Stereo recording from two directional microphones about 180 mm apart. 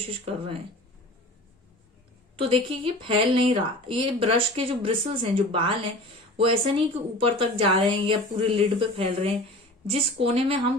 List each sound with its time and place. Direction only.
0.3 s a woman's voice: 30° right (ahead or behind)
2.4 s a woman's voice: 30° right (ahead or behind)